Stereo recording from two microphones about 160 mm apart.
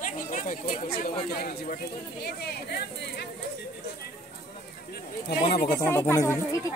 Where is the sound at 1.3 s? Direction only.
70° left (ahead or behind).